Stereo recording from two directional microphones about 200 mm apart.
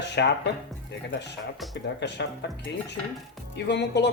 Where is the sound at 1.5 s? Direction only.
Centre (ahead or behind).